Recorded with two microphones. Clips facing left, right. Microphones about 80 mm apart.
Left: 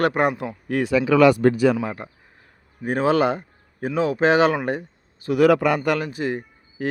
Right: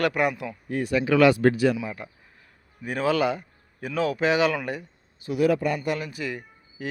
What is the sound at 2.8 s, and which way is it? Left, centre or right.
A man's voice, left.